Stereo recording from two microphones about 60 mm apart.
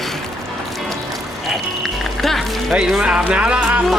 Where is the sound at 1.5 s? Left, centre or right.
Centre.